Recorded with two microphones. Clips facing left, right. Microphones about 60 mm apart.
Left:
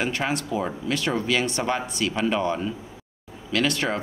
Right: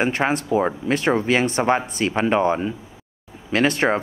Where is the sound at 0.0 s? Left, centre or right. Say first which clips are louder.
Right 5 dB; right.